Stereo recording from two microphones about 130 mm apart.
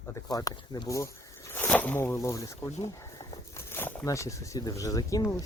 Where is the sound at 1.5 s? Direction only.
15° left (ahead or behind).